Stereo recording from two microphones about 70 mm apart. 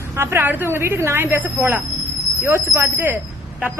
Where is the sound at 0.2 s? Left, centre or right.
Right.